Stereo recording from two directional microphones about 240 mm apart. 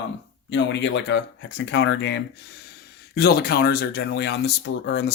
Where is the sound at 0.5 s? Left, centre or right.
Left.